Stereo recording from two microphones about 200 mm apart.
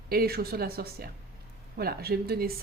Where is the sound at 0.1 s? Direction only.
50° right (ahead or behind).